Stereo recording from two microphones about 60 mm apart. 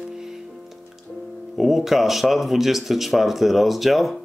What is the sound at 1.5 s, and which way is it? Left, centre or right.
Speech, centre.